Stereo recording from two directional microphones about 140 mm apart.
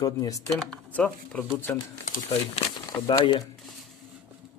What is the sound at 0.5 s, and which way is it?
Speech, 5° left (ahead or behind).